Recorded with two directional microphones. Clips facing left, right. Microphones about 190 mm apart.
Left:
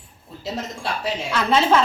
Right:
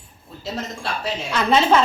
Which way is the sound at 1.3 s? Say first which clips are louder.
Right 1 dB; 5° left (ahead or behind).